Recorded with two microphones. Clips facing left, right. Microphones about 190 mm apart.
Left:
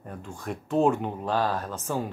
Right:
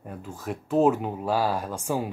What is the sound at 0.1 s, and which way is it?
Speech, 5° right (ahead or behind).